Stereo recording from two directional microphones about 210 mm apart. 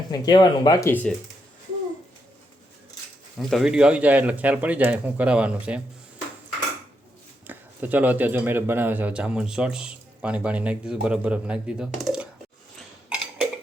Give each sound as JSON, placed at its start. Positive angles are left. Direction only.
{"t": 0.1, "sound": "speech", "side_deg": 20}
{"t": 3.3, "sound": "speech", "side_deg": 0}
{"t": 7.4, "sound": "speech", "side_deg": -10}